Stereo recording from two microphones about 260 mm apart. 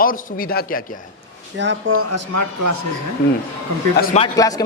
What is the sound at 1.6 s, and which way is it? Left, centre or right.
Speech, right.